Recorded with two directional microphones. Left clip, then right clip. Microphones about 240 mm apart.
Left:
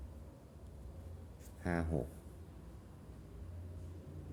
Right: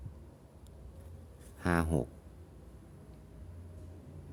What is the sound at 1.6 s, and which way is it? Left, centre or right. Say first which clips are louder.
Speech: right 7 dB; right.